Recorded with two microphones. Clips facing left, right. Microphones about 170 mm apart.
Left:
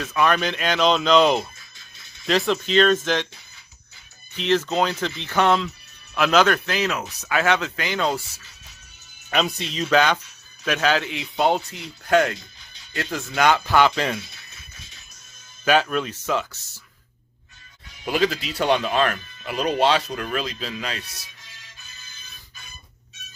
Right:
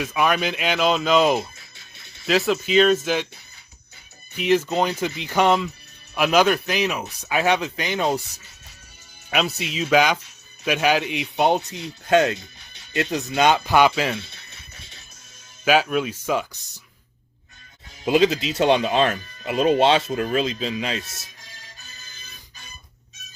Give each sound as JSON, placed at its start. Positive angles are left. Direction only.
{"t": 0.0, "sound": "speech", "side_deg": -10}
{"t": 4.4, "sound": "speech", "side_deg": -10}
{"t": 9.3, "sound": "speech", "side_deg": -5}
{"t": 15.6, "sound": "speech", "side_deg": -10}
{"t": 18.0, "sound": "speech", "side_deg": -20}
{"t": 21.5, "sound": "music", "side_deg": -40}